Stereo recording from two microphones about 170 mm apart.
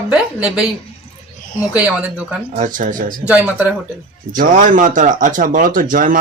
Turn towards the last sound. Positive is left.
turn(degrees=-50)  # may be behind; listen again after turning